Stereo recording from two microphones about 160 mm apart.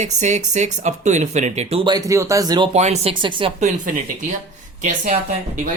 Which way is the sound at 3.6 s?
50° right (ahead or behind).